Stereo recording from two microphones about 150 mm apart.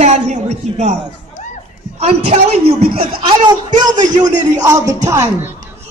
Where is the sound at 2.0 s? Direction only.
45° right (ahead or behind).